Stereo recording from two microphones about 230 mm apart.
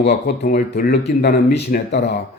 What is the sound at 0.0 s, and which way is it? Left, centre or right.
Speech, left.